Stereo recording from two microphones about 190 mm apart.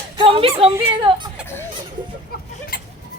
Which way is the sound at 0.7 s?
25° right (ahead or behind).